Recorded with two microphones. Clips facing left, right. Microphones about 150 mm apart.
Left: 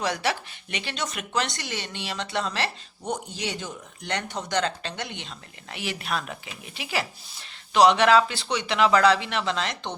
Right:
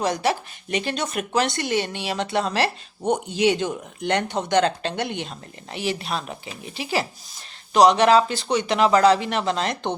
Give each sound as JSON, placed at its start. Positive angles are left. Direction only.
{"t": 0.0, "sound": "speech", "side_deg": -45}
{"t": 3.6, "sound": "speech", "side_deg": -65}
{"t": 5.7, "sound": "speech", "side_deg": -35}